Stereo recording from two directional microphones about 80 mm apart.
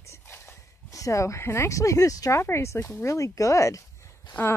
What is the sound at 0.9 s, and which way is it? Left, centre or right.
Speech, left.